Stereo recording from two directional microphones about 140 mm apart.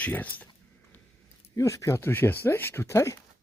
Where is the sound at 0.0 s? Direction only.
10° left (ahead or behind).